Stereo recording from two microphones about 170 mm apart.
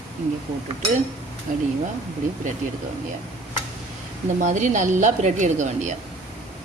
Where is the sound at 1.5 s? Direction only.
50° right (ahead or behind).